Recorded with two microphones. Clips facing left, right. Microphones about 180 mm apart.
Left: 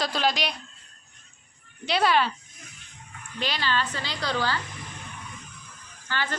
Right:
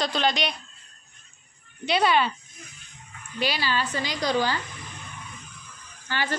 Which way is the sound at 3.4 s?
10° right (ahead or behind).